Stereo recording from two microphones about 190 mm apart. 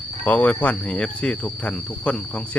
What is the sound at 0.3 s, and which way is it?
Speech, 5° left (ahead or behind).